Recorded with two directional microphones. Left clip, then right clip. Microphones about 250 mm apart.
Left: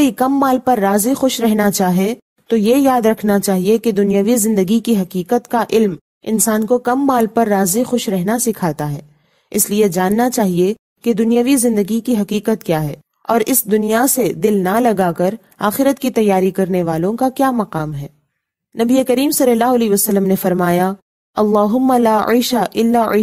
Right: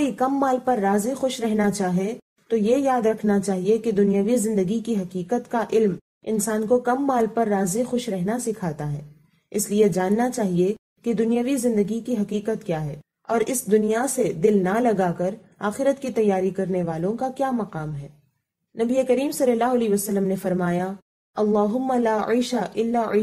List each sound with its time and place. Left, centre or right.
0.0 s a woman's voice: left